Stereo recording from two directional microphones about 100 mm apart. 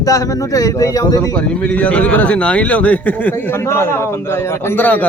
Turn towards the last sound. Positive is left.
turn(degrees=15)  # may be behind; listen again after turning